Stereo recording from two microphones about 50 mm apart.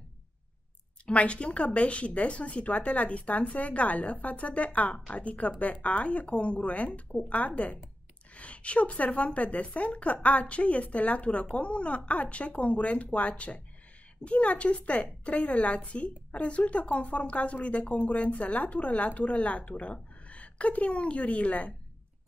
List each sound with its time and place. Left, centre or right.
1.0 s a woman's voice: left